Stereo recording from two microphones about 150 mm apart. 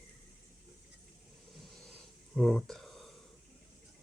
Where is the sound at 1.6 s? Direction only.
Centre (ahead or behind).